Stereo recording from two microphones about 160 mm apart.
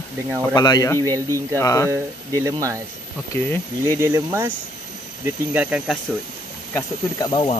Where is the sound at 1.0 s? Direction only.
20° right (ahead or behind).